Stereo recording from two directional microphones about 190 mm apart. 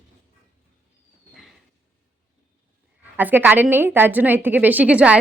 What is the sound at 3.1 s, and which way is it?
A woman's voice, 10° right (ahead or behind).